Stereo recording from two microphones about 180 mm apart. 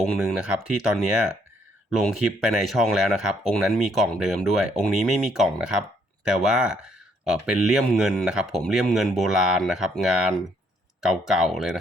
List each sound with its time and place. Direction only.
0.0 s speech: centre (ahead or behind)
2.0 s speech: centre (ahead or behind)